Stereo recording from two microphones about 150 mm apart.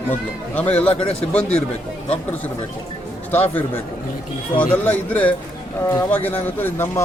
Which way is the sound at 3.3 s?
10° left (ahead or behind).